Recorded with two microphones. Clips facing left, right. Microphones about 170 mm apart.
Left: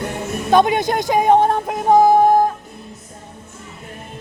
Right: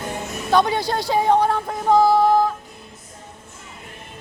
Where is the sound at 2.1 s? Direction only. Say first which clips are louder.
Left 3 dB; 50° left (ahead or behind).